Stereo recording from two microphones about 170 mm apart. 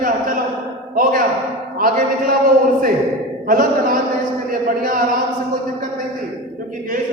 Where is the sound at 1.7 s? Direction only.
55° right (ahead or behind).